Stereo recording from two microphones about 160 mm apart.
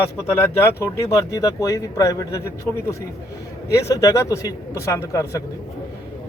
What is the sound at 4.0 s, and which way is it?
Speech, 20° left (ahead or behind).